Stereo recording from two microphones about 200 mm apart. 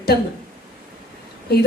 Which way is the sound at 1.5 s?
55° left (ahead or behind).